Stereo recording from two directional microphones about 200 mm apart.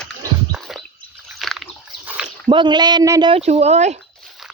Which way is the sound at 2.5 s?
20° right (ahead or behind).